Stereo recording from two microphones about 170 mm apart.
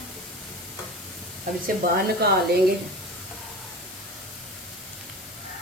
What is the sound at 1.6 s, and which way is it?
Speech, 65° right (ahead or behind).